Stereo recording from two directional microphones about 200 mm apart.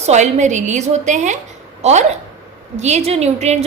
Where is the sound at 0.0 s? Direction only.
35° right (ahead or behind).